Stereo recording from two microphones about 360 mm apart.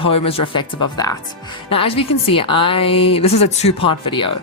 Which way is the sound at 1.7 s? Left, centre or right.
Centre.